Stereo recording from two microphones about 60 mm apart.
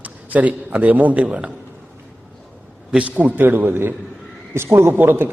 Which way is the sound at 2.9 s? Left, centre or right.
Right.